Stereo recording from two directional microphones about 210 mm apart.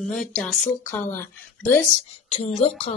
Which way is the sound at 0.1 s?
Centre (ahead or behind).